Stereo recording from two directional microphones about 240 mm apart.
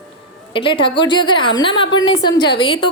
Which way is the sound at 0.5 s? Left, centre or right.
Left.